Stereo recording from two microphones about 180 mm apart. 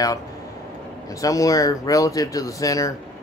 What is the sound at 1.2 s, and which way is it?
Speech, 20° left (ahead or behind).